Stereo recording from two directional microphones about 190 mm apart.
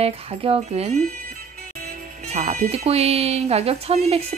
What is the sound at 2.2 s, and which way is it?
Speech, 35° right (ahead or behind).